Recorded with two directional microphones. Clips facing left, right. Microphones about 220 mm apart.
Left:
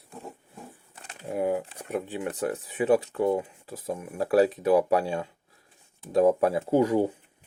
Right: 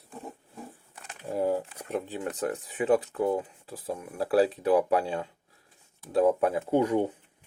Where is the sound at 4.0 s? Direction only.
15° left (ahead or behind).